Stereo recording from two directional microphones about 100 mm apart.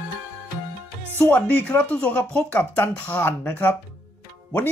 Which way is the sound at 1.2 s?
20° left (ahead or behind).